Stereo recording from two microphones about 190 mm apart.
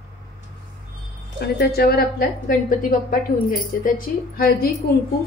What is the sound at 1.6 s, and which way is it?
A woman's voice, 55° left (ahead or behind).